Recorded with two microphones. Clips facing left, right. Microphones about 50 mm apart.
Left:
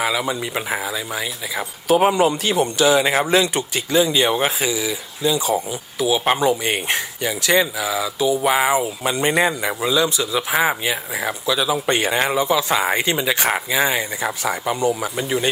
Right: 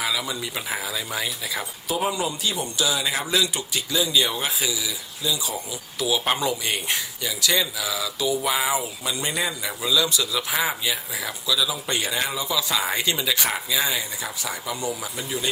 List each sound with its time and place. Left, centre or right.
0.0 s speech: left
0.9 s speech: centre
1.9 s speech: left
6.0 s speech: left
9.1 s speech: left